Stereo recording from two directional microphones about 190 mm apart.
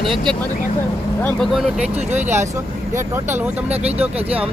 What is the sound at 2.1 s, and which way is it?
Speech, 10° right (ahead or behind).